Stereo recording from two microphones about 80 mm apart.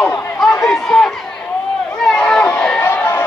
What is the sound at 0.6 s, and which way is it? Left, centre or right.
Run, centre.